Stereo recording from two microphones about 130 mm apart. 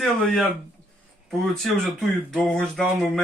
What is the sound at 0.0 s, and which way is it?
Speech, 5° left (ahead or behind).